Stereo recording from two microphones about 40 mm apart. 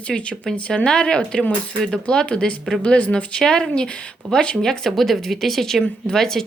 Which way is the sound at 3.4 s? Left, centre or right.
Centre.